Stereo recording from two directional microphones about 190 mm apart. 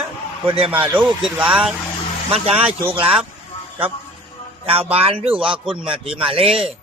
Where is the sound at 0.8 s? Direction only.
10° right (ahead or behind).